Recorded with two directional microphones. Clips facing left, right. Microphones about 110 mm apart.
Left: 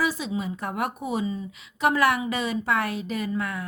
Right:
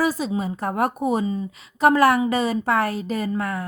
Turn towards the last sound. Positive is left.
turn(degrees=-40)  # may be behind; listen again after turning